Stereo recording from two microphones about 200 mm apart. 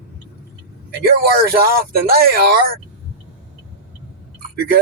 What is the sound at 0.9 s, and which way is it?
Speech, 50° right (ahead or behind).